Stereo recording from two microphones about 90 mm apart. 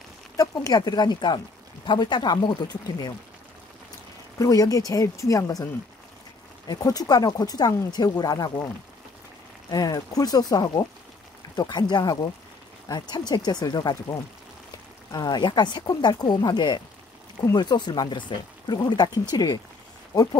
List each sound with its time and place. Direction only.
0.4 s speech: 45° left (ahead or behind)
4.4 s speech: 40° left (ahead or behind)
6.7 s speech: 45° left (ahead or behind)
9.7 s speech: 45° left (ahead or behind)